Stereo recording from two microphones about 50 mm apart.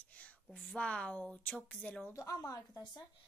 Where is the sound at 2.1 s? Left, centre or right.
Left.